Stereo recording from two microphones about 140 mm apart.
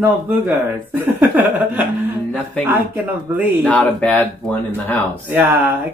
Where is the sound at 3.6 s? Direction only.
10° left (ahead or behind).